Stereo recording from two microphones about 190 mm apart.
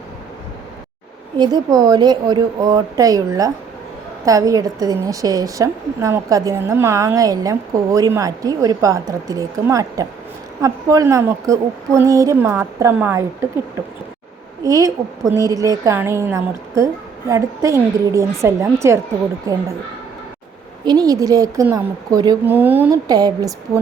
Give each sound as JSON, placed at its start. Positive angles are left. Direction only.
{"t": 1.4, "sound": "a woman's voice", "side_deg": -20}
{"t": 14.6, "sound": "a woman's voice", "side_deg": -15}
{"t": 20.8, "sound": "a woman's voice", "side_deg": -20}